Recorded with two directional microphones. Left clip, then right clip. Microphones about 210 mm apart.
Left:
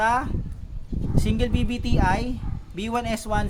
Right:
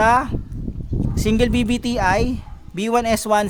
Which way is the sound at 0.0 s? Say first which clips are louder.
Right 6 dB; 45° right (ahead or behind).